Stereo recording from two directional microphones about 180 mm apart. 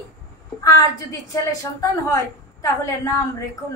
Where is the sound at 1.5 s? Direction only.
20° left (ahead or behind).